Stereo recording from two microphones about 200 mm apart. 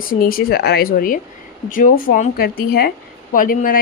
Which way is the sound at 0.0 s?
45° left (ahead or behind).